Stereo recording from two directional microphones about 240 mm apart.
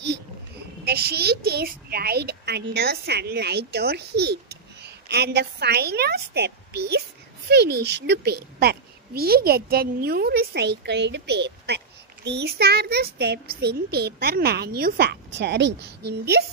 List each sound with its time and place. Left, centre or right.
0.8 s a child's voice: right